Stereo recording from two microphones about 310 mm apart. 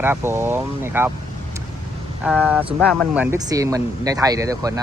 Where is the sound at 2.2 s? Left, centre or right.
Centre.